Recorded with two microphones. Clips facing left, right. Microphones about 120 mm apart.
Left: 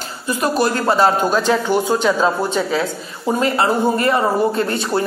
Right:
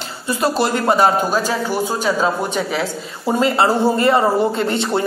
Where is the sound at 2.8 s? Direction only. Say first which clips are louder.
Even; 25° right (ahead or behind).